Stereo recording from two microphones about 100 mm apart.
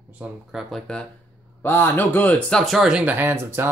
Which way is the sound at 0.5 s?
Centre (ahead or behind).